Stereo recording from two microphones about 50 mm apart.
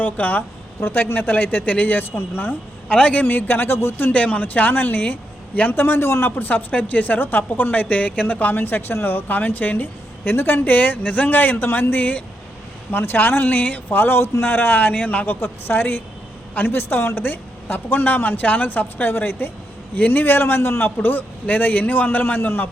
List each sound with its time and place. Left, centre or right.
0.0 s a woman's voice: left
0.8 s a woman's voice: left
2.9 s a man's voice: left
4.1 s a woman's voice: left
6.3 s a woman's voice: left
12.9 s a man's voice: left
14.0 s a man's voice: left
15.4 s a man's voice: left